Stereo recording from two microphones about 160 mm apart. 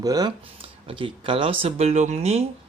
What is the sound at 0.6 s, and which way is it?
Speech, 35° right (ahead or behind).